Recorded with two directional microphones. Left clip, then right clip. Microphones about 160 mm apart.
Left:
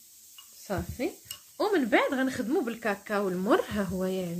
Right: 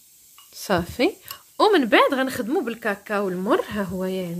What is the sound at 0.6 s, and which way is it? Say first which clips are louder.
Speech: right 12 dB; 70° right (ahead or behind).